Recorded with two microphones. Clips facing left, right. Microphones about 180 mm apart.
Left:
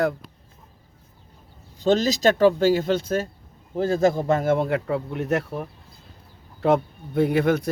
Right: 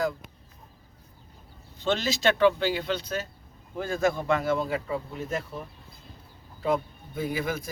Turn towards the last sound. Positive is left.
turn(degrees=70)  # may be behind; listen again after turning